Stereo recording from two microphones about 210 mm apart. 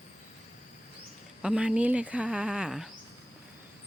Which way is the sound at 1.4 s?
5° right (ahead or behind).